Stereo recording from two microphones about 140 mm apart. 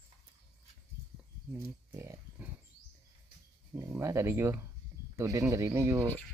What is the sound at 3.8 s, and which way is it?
Speech, 20° right (ahead or behind).